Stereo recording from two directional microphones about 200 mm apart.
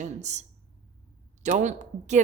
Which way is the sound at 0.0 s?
35° right (ahead or behind).